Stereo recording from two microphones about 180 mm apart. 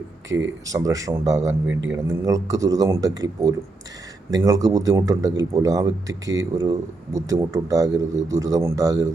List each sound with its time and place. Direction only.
0.3 s speech: 15° right (ahead or behind)
1.6 s speech: 90° right
1.9 s a man's voice: 15° right (ahead or behind)